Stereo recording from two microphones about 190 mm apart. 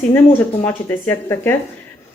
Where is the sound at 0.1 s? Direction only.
10° left (ahead or behind).